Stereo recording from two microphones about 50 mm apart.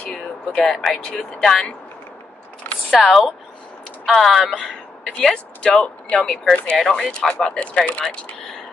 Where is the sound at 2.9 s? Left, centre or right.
Centre; by 8.1 s left.